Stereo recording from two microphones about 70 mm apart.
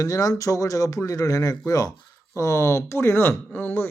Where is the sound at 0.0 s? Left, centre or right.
Left.